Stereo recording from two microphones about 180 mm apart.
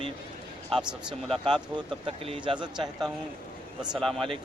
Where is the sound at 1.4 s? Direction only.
25° right (ahead or behind).